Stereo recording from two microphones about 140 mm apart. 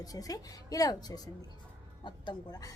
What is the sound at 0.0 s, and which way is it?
A woman's voice, 25° left (ahead or behind).